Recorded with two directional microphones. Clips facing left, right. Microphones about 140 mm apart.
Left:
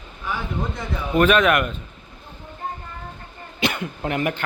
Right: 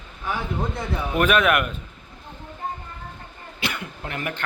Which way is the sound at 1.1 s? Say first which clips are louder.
Left 3 dB; 10° right (ahead or behind).